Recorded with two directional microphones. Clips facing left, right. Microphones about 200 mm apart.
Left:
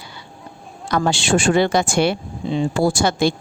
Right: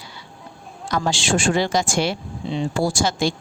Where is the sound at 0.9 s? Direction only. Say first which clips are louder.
Left 4 dB; 60° left (ahead or behind).